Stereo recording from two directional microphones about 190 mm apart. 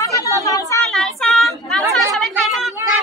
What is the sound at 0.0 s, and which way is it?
Chatter, 20° left (ahead or behind).